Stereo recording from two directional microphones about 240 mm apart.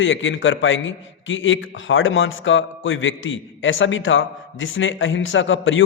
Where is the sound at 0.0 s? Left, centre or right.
Left.